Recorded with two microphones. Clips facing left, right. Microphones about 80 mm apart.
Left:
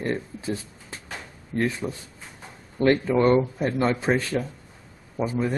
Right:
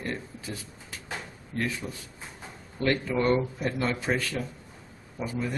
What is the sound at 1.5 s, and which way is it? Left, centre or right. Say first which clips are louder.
Speech: left 6 dB; left.